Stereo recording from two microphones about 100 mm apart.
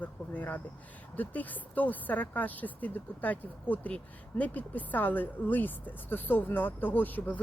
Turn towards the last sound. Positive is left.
turn(degrees=20)  # may be behind; listen again after turning